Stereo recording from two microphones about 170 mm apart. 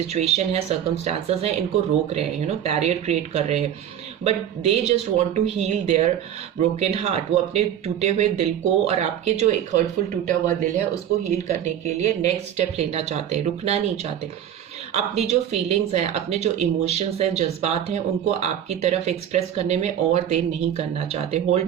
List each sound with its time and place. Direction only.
0.1 s a woman's voice: 40° right (ahead or behind)
2.6 s a woman's voice: 40° right (ahead or behind)